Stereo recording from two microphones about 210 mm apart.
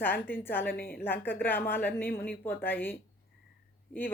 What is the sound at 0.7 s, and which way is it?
Speech, 45° left (ahead or behind).